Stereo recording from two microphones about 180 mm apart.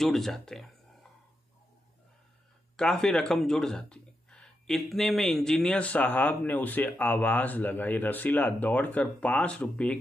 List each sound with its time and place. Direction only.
0.0 s speech: centre (ahead or behind)
2.7 s speech: 5° left (ahead or behind)